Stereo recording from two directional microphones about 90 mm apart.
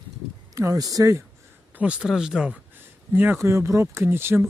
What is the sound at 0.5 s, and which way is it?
Speech, 35° right (ahead or behind).